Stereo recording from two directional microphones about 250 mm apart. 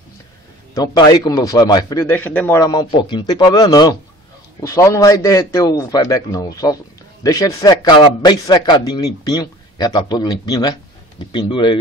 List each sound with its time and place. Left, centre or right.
0.7 s a man's voice: centre